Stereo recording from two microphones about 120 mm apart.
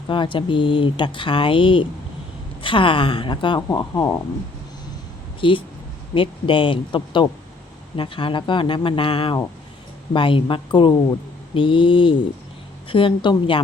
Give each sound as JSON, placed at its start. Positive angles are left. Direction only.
{"t": 0.1, "sound": "speech", "side_deg": 40}
{"t": 5.4, "sound": "speech", "side_deg": 45}